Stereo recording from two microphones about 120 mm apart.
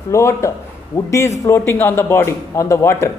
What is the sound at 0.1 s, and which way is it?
A man's voice, 25° left (ahead or behind).